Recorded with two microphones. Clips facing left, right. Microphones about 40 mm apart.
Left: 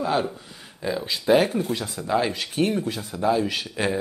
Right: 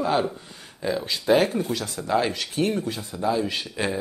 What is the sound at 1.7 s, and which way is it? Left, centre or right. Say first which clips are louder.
Speech: even; left.